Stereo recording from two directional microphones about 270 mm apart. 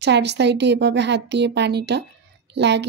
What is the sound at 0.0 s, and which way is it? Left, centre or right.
Speech, right.